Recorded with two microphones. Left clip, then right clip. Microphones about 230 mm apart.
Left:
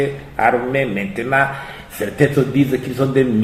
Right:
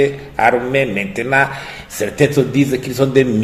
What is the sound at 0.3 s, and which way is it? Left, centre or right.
A man's voice, right.